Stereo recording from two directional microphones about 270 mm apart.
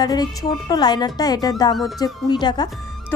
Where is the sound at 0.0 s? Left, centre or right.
Centre.